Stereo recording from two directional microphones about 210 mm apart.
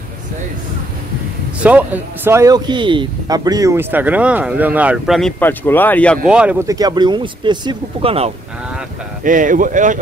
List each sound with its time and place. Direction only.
1.6 s speech: 5° right (ahead or behind)
5.4 s speech: 10° left (ahead or behind)
6.3 s speech: 5° right (ahead or behind); by 8.3 s 25° right (ahead or behind)
9.2 s speech: 40° right (ahead or behind)